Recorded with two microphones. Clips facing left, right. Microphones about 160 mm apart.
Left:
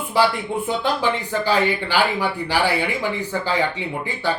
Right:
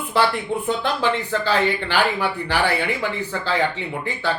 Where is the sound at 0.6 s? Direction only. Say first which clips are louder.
Left 1 dB; 10° left (ahead or behind).